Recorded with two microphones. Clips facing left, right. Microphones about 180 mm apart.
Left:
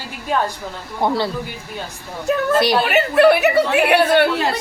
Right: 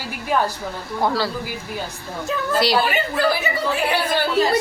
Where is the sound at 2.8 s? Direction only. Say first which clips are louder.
Left 7 dB; 70° left (ahead or behind).